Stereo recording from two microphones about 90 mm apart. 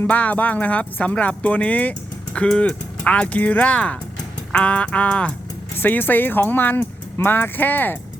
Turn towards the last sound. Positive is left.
turn(degrees=20)  # may be behind; listen again after turning